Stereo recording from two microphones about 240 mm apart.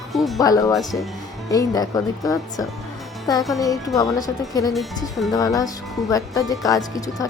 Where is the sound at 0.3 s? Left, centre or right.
Centre.